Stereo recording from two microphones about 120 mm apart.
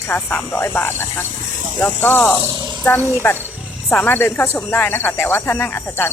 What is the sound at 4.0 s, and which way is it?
Speech, 15° left (ahead or behind).